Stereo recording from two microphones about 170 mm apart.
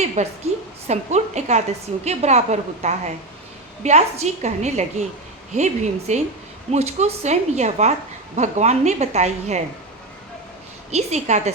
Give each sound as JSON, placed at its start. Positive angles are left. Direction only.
{"t": 0.2, "sound": "a woman's voice", "side_deg": -40}
{"t": 10.9, "sound": "speech", "side_deg": -40}